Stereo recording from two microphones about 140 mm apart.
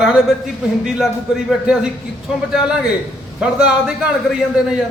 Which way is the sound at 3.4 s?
5° right (ahead or behind).